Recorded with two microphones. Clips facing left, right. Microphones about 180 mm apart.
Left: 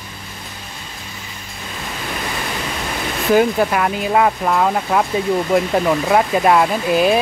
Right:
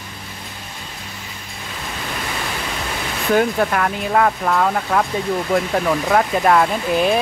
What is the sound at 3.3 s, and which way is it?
Speech, 10° left (ahead or behind).